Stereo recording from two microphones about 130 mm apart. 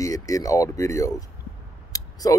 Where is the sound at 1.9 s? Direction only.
30° left (ahead or behind).